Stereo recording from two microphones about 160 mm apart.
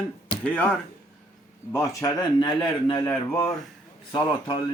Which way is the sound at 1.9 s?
20° left (ahead or behind).